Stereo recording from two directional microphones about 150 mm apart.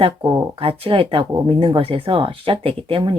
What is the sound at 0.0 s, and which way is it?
Speech, 40° right (ahead or behind).